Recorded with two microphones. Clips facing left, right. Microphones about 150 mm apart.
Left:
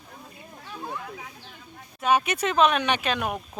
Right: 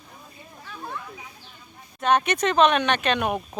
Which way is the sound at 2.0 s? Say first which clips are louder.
Right 2 dB; 5° left (ahead or behind).